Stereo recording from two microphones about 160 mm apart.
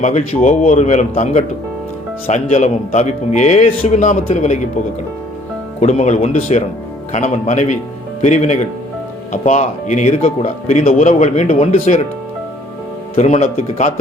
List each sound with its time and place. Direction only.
0.0 s speech: 50° left (ahead or behind)
5.8 s speech: 45° left (ahead or behind)
13.1 s speech: 40° left (ahead or behind)